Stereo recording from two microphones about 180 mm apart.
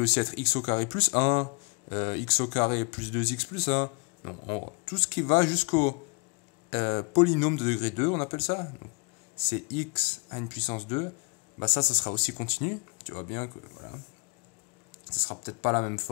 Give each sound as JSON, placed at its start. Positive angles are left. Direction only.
{"t": 0.0, "sound": "speech", "side_deg": 35}
{"t": 15.2, "sound": "speech", "side_deg": 40}